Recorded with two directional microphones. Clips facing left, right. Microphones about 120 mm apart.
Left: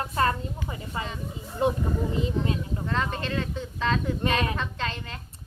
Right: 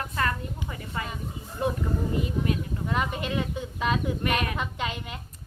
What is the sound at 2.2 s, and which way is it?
Speech, 25° left (ahead or behind).